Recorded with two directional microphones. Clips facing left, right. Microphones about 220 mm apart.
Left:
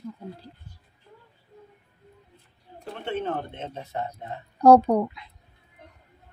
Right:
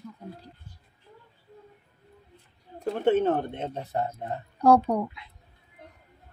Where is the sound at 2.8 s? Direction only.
40° right (ahead or behind).